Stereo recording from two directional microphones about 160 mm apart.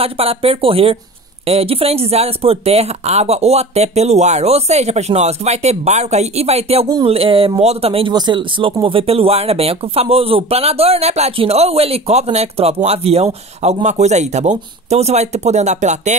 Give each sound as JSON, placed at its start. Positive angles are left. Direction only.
{"t": 0.0, "sound": "speech", "side_deg": -40}